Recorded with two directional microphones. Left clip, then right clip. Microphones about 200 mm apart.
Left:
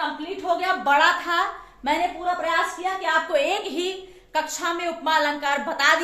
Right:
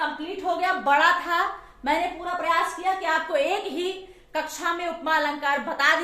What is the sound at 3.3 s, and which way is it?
A woman's voice, 15° left (ahead or behind).